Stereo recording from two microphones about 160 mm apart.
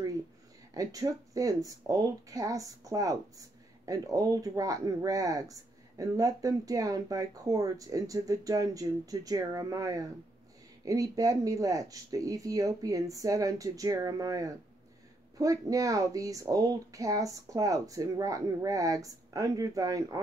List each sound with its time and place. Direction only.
0.7 s speech: 20° right (ahead or behind)